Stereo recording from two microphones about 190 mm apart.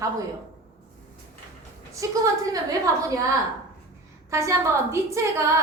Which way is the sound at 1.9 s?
15° right (ahead or behind).